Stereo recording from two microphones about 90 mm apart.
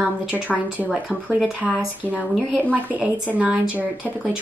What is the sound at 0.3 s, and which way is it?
Speech, 20° right (ahead or behind).